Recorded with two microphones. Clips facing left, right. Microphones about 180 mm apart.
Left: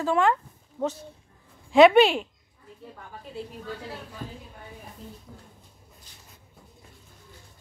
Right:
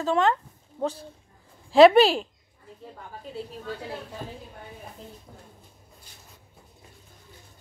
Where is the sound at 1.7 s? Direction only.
35° right (ahead or behind).